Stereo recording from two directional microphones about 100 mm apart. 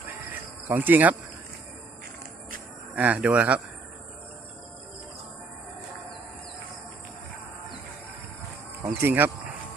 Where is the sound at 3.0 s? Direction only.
15° right (ahead or behind).